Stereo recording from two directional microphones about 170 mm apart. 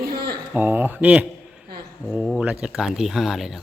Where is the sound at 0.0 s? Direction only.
65° right (ahead or behind).